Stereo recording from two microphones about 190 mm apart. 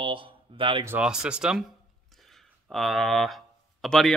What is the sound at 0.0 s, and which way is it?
Speech, 25° right (ahead or behind).